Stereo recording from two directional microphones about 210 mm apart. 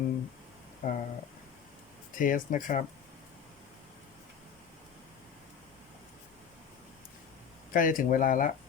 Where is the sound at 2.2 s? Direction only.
40° left (ahead or behind).